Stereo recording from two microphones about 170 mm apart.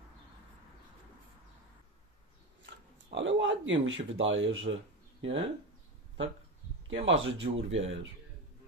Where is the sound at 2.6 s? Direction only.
90° right.